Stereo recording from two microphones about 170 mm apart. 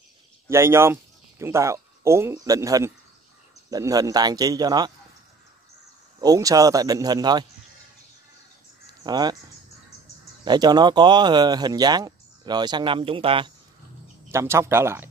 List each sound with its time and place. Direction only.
0.5 s speech: 15° right (ahead or behind)
6.2 s speech: 20° right (ahead or behind)
9.0 s speech: 25° right (ahead or behind)
10.4 s speech: 25° right (ahead or behind)
14.3 s speech: 15° right (ahead or behind)